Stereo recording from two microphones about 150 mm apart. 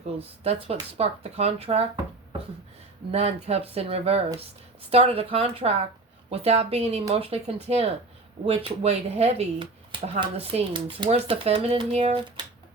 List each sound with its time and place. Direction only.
0.2 s speech: 40° right (ahead or behind)
3.1 s speech: 45° right (ahead or behind)